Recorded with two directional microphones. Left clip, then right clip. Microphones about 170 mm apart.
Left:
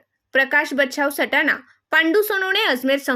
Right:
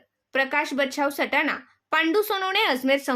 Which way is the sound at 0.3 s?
30° left (ahead or behind).